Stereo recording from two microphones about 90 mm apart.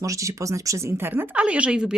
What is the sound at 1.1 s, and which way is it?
Speech, 15° right (ahead or behind).